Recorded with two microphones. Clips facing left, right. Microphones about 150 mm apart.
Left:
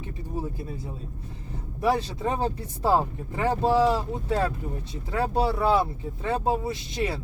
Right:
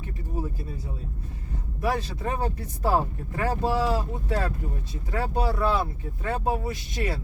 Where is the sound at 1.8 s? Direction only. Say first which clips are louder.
Left 3 dB; 25° left (ahead or behind).